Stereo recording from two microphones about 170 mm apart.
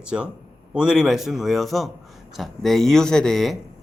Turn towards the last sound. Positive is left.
turn(degrees=0)  # may be behind; listen again after turning